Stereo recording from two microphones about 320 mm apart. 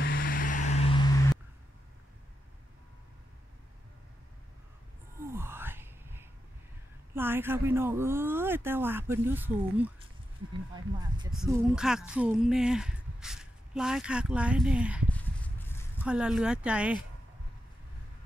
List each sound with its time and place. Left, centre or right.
0.0 s vehicle: left
5.2 s a sound: centre
7.2 s speech: centre
11.3 s speech: centre
12.1 s a sound: centre
16.1 s speech: centre